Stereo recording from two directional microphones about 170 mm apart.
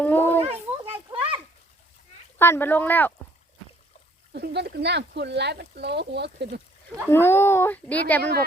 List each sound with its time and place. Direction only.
0.0 s children playing: 10° left (ahead or behind)
0.4 s a sound: 35° right (ahead or behind)
2.4 s speech: 15° left (ahead or behind)
4.3 s speech: 70° right (ahead or behind)
7.1 s speech: 15° left (ahead or behind)